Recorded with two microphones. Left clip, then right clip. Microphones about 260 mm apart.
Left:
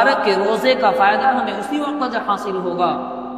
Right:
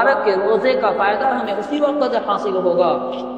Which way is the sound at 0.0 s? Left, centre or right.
Left.